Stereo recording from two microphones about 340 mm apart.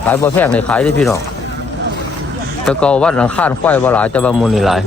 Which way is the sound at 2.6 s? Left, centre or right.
Centre.